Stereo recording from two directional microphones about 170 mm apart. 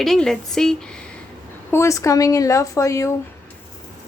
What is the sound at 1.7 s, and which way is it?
Speech, 15° left (ahead or behind).